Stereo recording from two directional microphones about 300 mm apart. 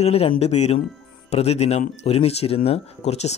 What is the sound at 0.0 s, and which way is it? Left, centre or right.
Speech, centre.